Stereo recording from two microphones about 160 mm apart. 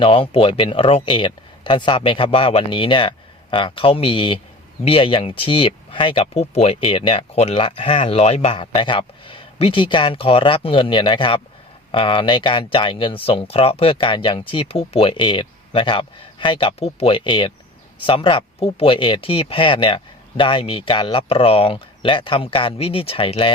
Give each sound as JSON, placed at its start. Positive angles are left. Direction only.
{"t": 0.0, "sound": "speech", "side_deg": 35}